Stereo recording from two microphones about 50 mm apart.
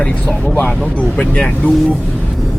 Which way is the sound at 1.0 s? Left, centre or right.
Left.